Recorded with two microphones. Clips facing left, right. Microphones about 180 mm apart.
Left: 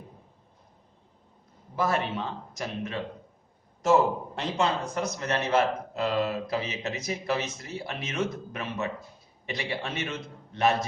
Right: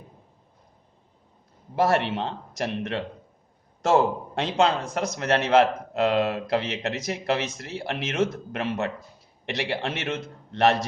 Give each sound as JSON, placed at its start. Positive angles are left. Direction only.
{"t": 1.7, "sound": "a man's voice", "side_deg": -75}